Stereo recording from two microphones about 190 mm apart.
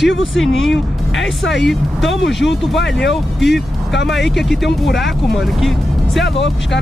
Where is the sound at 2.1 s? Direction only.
70° left (ahead or behind).